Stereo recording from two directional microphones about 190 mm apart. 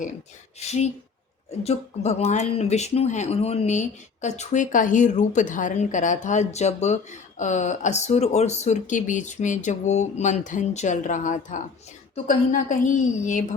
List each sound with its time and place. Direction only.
0.6 s speech: 35° left (ahead or behind)